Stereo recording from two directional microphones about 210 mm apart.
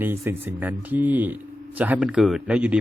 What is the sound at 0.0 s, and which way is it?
Speech, 10° right (ahead or behind).